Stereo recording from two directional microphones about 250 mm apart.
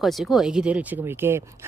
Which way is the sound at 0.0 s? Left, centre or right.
Centre.